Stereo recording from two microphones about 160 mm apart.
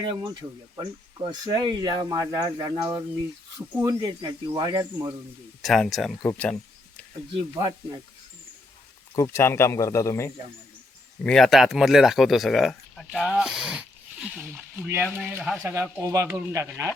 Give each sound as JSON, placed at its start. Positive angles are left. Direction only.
{"t": 0.1, "sound": "speech", "side_deg": -30}
{"t": 5.6, "sound": "speech", "side_deg": 0}
{"t": 6.2, "sound": "a sound", "side_deg": 10}
{"t": 7.5, "sound": "speech", "side_deg": -20}
{"t": 9.1, "sound": "speech", "side_deg": 15}
{"t": 11.2, "sound": "speech", "side_deg": 5}